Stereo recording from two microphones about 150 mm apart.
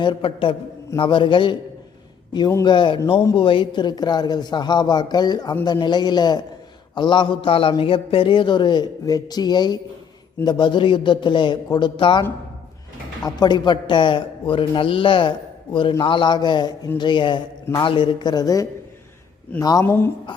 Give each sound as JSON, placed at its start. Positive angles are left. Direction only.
{"t": 0.0, "sound": "a man's voice", "side_deg": 35}
{"t": 2.6, "sound": "a man's voice", "side_deg": 30}
{"t": 13.2, "sound": "a man's voice", "side_deg": 30}
{"t": 19.8, "sound": "speech", "side_deg": 15}